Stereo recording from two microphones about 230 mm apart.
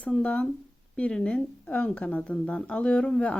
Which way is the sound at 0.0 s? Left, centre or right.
Centre.